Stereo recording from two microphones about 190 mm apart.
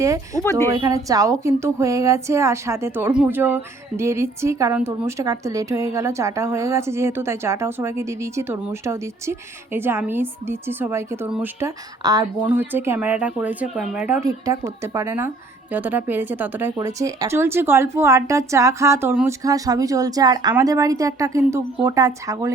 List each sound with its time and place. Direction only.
0.0 s speech: 15° right (ahead or behind)
12.4 s speech: 10° right (ahead or behind)
14.2 s speech: 20° right (ahead or behind)